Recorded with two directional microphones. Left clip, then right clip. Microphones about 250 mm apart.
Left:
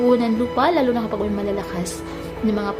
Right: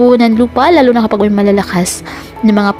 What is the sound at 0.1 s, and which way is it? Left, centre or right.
A woman's voice, right.